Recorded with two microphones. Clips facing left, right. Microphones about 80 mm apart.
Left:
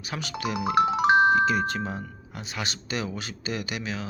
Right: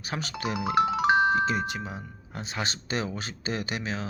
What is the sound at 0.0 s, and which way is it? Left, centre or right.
Speech, right.